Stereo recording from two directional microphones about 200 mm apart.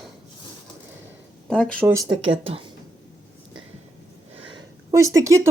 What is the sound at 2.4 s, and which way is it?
Speech, 25° right (ahead or behind).